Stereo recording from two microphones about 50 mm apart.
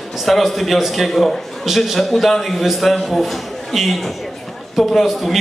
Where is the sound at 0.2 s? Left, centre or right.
Centre.